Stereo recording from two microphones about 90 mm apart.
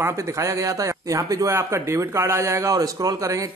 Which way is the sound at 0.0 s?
35° right (ahead or behind).